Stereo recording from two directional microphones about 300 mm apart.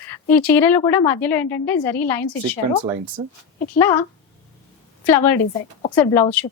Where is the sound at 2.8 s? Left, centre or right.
Right.